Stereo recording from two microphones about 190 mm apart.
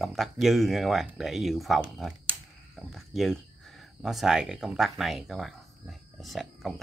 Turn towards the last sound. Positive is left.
turn(degrees=0)  # may be behind; listen again after turning